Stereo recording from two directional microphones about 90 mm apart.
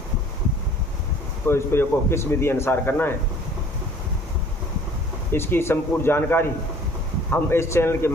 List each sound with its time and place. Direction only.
1.5 s speech: 25° left (ahead or behind)
5.3 s speech: 25° left (ahead or behind)